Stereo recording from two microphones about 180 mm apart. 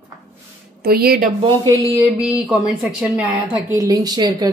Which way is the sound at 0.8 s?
60° right (ahead or behind).